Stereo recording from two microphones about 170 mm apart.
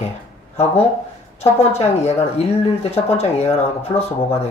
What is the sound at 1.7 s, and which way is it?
Speech, 40° left (ahead or behind).